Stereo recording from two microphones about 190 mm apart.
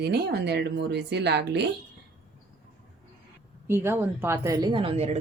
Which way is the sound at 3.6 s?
15° right (ahead or behind).